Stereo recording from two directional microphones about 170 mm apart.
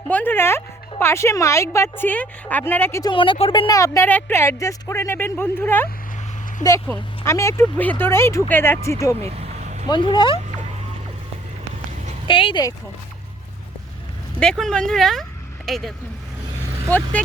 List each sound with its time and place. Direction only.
0.1 s speech: 10° left (ahead or behind)
3.1 s speech: 30° left (ahead or behind)
9.2 s vehicle: 35° right (ahead or behind)
9.9 s speech: 25° left (ahead or behind)
12.3 s speech: 30° left (ahead or behind)
14.3 s speech: 5° left (ahead or behind)
16.9 s speech: 10° left (ahead or behind)